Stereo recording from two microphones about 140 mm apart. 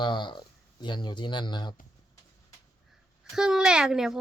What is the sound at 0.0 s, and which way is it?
Speech, 35° left (ahead or behind).